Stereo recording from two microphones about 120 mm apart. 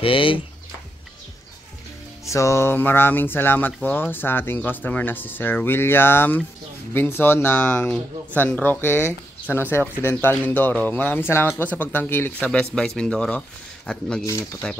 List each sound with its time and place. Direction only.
0.0 s speech: 45° left (ahead or behind)
2.2 s speech: 25° left (ahead or behind); by 14.8 s 5° left (ahead or behind)